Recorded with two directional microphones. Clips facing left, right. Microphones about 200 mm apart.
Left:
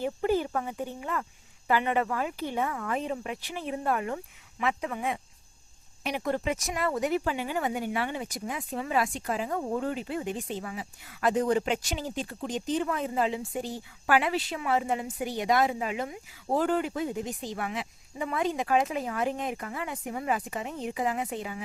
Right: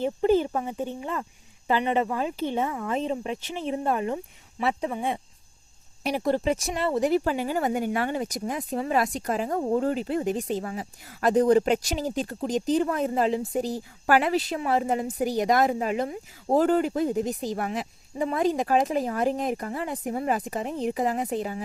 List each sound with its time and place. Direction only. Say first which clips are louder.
0.0 s speech: right 5 dB; 25° right (ahead or behind)